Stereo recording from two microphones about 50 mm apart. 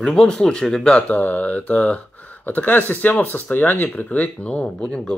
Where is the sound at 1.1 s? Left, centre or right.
Left.